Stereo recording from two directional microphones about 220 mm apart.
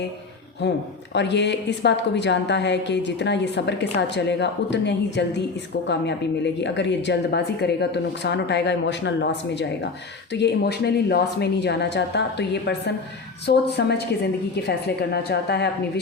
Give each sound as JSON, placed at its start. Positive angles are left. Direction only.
{"t": 0.6, "sound": "a woman's voice", "side_deg": 50}